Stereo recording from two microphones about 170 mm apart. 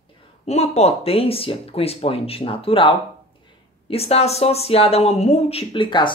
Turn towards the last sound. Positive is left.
turn(degrees=30)  # may be behind; listen again after turning